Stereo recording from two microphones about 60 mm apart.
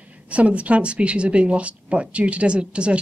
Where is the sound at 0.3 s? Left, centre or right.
Right.